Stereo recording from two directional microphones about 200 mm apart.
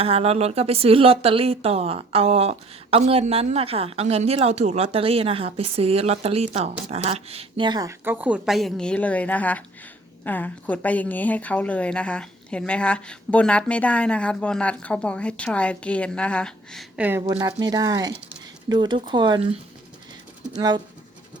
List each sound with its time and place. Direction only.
0.0 s a woman's voice: 30° right (ahead or behind); by 16.8 s 5° left (ahead or behind)
17.0 s speech: 10° right (ahead or behind)